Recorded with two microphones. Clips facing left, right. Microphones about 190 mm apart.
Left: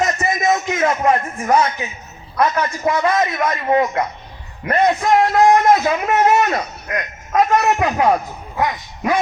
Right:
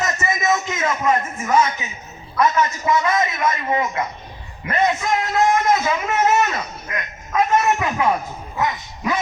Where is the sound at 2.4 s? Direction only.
60° left (ahead or behind); by 8.1 s 45° left (ahead or behind).